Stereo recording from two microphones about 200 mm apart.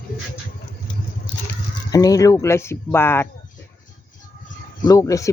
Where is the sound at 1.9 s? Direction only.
20° left (ahead or behind).